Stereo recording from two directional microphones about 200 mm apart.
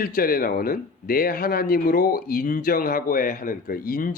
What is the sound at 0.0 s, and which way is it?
Speech, 45° left (ahead or behind).